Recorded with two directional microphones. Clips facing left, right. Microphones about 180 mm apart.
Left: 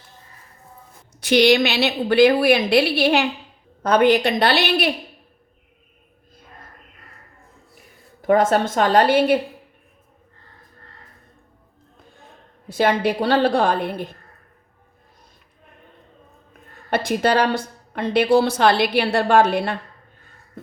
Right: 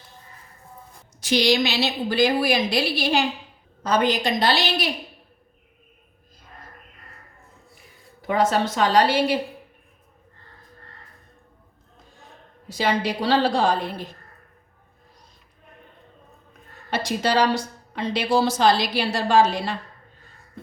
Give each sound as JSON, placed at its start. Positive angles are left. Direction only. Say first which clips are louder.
{"t": 1.2, "sound": "a woman's voice", "louder": "left 5 dB", "side_deg": 60}
{"t": 8.2, "sound": "a woman's voice", "louder": "left 4 dB", "side_deg": 50}
{"t": 12.6, "sound": "a woman's voice", "louder": "left 5 dB", "side_deg": 55}
{"t": 16.9, "sound": "a woman's voice", "louder": "left 4 dB", "side_deg": 55}